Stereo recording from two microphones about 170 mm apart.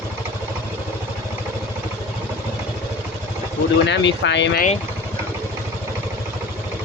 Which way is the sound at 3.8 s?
90° left.